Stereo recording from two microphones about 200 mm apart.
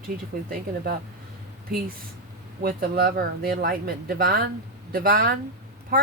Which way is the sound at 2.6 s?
50° right (ahead or behind).